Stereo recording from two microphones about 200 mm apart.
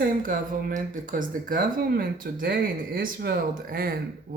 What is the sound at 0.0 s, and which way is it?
Speech, 45° right (ahead or behind).